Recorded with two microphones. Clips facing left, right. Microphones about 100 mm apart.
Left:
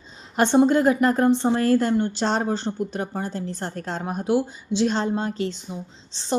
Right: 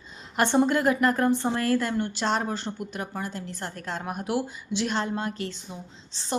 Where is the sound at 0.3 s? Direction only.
20° left (ahead or behind).